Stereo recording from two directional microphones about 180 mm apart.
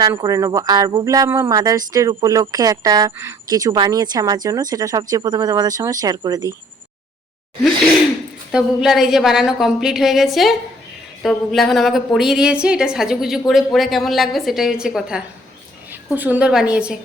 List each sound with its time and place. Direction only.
0.0 s speech: 20° right (ahead or behind)
8.5 s a woman's voice: centre (ahead or behind)